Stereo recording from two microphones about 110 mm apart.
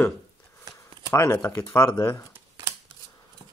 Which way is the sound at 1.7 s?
25° left (ahead or behind).